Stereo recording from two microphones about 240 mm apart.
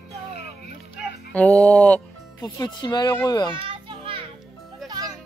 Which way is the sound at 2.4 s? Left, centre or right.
Centre.